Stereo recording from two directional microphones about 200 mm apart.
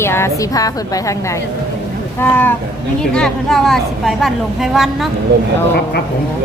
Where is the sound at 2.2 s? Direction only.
10° left (ahead or behind).